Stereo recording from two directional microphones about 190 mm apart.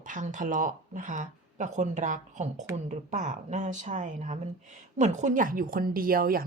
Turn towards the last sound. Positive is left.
turn(degrees=-50)  # may be behind; listen again after turning